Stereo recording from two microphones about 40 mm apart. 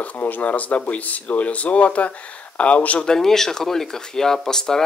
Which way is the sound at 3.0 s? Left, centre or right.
Centre.